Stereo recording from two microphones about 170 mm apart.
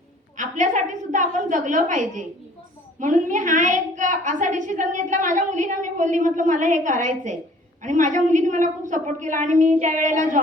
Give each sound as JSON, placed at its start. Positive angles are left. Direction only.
{"t": 0.3, "sound": "a woman's voice", "side_deg": -45}